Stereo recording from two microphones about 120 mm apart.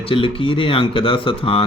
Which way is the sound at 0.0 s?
45° left (ahead or behind).